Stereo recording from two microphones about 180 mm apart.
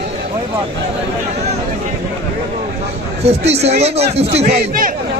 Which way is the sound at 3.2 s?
35° right (ahead or behind).